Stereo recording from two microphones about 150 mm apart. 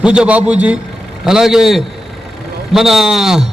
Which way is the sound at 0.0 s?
5° right (ahead or behind).